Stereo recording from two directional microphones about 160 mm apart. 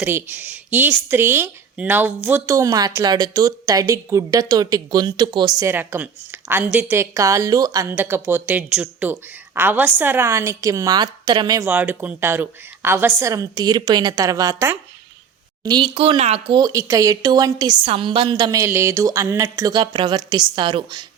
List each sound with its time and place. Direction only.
0.0 s a woman's voice: 15° right (ahead or behind)
11.7 s speech: 10° right (ahead or behind); by 16.6 s 35° right (ahead or behind)
16.6 s a woman's voice: 20° right (ahead or behind)